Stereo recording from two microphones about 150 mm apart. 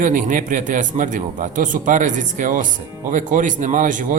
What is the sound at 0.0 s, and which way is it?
Speech, 60° right (ahead or behind).